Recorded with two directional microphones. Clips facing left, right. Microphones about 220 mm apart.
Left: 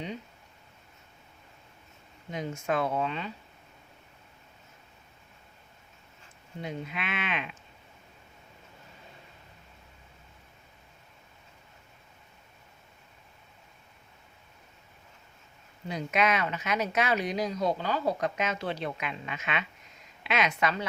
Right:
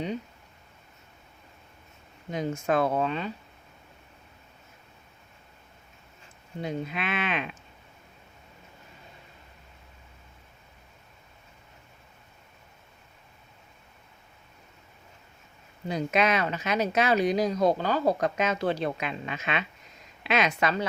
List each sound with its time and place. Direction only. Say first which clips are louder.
2.3 s speech: right 4 dB; 40° right (ahead or behind)
6.6 s speech: right 5 dB; 35° right (ahead or behind)
15.9 s speech: right 3 dB; 35° right (ahead or behind)